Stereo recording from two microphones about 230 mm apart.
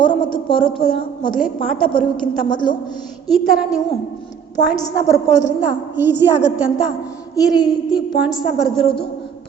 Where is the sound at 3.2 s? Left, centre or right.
Centre.